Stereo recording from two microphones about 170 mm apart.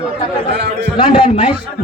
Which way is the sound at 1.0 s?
30° left (ahead or behind).